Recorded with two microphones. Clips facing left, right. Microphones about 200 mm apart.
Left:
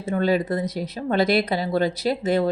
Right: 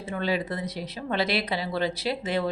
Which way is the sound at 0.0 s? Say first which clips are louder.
Left 7 dB; 45° left (ahead or behind).